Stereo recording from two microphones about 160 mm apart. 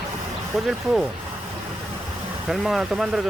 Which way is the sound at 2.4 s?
Centre (ahead or behind).